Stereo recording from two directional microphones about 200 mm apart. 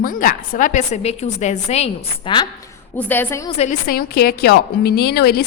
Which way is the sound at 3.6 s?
40° left (ahead or behind).